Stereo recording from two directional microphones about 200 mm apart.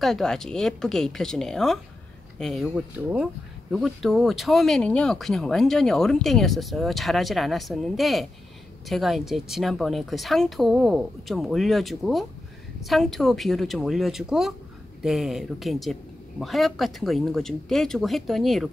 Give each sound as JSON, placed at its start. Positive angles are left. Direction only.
{"t": 0.0, "sound": "speech", "side_deg": 0}